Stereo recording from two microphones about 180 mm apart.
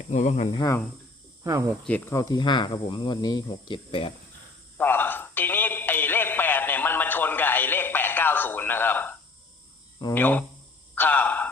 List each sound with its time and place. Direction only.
0.1 s speech: 40° left (ahead or behind)
0.5 s speech: 20° left (ahead or behind)
1.5 s speech: 15° right (ahead or behind)
1.8 s speech: 10° left (ahead or behind); by 4.1 s 25° left (ahead or behind)
4.8 s music: 10° left (ahead or behind)
10.2 s speech: 10° left (ahead or behind)
10.9 s a sound: 10° left (ahead or behind)